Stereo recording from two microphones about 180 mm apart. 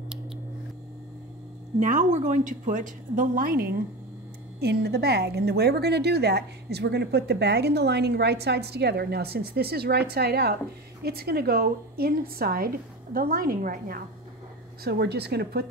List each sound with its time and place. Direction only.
1.8 s a woman's voice: 45° right (ahead or behind)
14.8 s a woman's voice: 60° right (ahead or behind)